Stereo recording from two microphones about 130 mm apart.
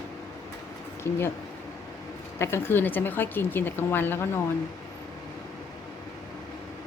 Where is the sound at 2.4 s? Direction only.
20° left (ahead or behind).